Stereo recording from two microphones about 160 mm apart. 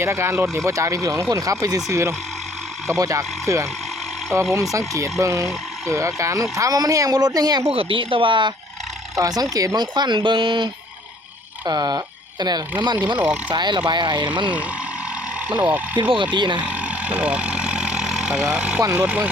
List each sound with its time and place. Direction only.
0.0 s speech: 15° right (ahead or behind)
7.7 s speech: 35° right (ahead or behind)
13.1 s speech: 5° right (ahead or behind)
13.5 s speech: 25° right (ahead or behind)
15.4 s speech: 10° right (ahead or behind)
16.0 s speech: 30° right (ahead or behind)
16.6 s vehicle: 5° right (ahead or behind)
18.9 s speech: 5° right (ahead or behind)